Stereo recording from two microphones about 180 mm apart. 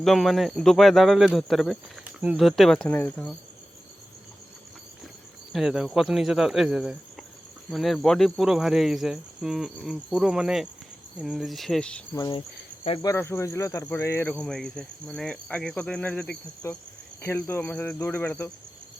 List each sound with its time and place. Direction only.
0.0 s cricket: centre (ahead or behind)
5.5 s cricket: 5° right (ahead or behind)
12.1 s cricket: 20° left (ahead or behind)
13.0 s speech: 15° left (ahead or behind)